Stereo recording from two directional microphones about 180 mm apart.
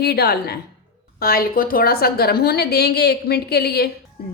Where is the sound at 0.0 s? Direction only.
60° left (ahead or behind).